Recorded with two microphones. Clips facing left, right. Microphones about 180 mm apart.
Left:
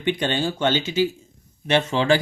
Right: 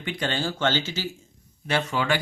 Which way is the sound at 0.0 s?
20° left (ahead or behind).